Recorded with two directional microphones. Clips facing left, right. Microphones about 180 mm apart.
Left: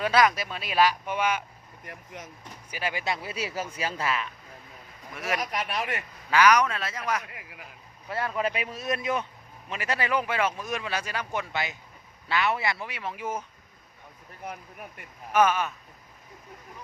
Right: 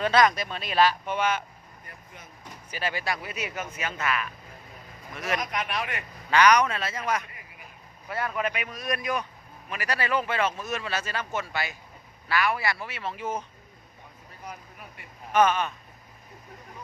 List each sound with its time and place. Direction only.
0.0 s speech: 5° left (ahead or behind)
1.8 s speech: 90° left
2.6 s speech: 10° left (ahead or behind); by 4.3 s 30° left (ahead or behind)
5.1 s speech: 10° left (ahead or behind)
5.5 s speech: 35° left (ahead or behind)
6.3 s speech: 5° left (ahead or behind)
8.1 s speech: 25° left (ahead or behind); by 13.4 s 10° left (ahead or behind)
15.3 s speech: 10° left (ahead or behind)